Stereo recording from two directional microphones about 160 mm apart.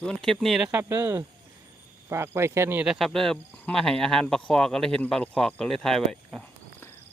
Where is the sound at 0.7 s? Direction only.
15° right (ahead or behind).